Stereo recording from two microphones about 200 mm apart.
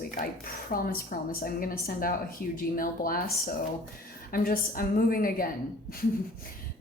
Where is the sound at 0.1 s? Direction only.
45° left (ahead or behind).